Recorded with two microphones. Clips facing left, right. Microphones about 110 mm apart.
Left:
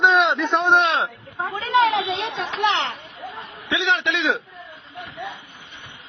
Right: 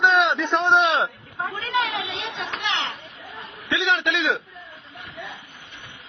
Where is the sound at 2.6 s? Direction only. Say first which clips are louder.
Left 8 dB; 40° left (ahead or behind).